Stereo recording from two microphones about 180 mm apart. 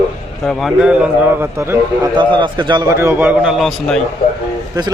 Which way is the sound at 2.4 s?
25° right (ahead or behind).